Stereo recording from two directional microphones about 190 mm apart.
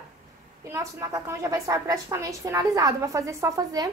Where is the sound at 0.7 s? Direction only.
15° right (ahead or behind).